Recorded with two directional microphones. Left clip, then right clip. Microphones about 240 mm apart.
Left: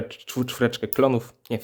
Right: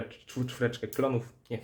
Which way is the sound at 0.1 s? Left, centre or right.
Left.